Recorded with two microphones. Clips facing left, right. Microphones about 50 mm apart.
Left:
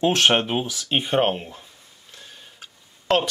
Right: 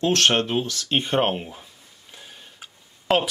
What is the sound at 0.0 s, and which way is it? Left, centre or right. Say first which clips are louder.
Speech: left 1 dB; centre.